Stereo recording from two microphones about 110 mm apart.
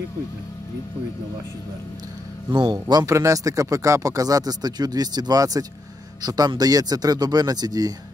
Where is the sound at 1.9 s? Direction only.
35° right (ahead or behind).